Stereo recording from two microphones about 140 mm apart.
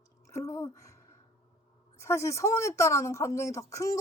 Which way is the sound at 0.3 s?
20° left (ahead or behind).